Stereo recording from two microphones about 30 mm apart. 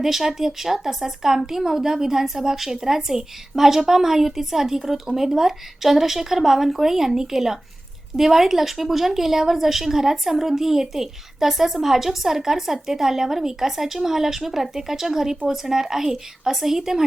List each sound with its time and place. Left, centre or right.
0.0 s a woman's voice: centre